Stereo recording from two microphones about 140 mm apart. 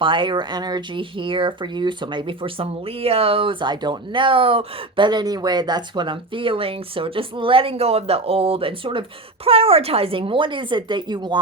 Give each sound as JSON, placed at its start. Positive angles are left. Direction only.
{"t": 0.0, "sound": "speech", "side_deg": -35}